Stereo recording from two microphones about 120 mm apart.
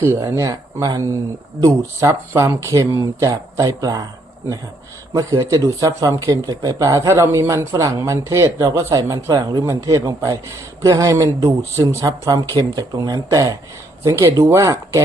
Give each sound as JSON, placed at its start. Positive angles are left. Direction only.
{"t": 0.0, "sound": "speech", "side_deg": -20}
{"t": 5.1, "sound": "speech", "side_deg": -30}